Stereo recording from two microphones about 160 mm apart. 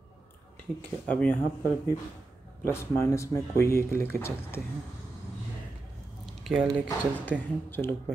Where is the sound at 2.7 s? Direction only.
15° left (ahead or behind).